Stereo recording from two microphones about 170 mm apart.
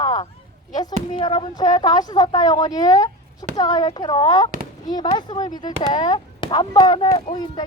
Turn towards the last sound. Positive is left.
turn(degrees=25)  # may be behind; listen again after turning